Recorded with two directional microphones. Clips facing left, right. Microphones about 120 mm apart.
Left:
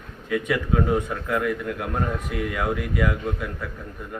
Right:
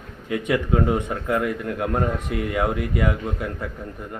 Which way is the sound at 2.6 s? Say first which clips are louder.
Right 2 dB; 30° right (ahead or behind).